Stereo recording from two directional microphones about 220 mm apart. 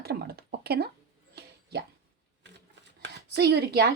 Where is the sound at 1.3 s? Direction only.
50° right (ahead or behind).